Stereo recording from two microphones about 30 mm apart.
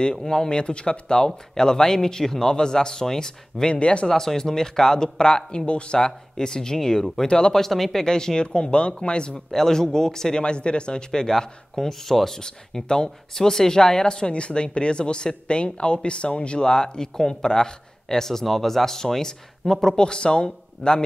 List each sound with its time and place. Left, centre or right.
0.3 s speech: centre
0.6 s speech: left
3.6 s speech: left
4.1 s speech: centre; by 5.9 s left
5.9 s speech: left
7.5 s speech: centre
8.0 s speech: left
9.5 s speech: centre
10.4 s speech: left; by 12.2 s centre
12.8 s speech: left
13.4 s speech: centre
14.0 s speech: left; by 20.0 s centre
20.0 s speech: left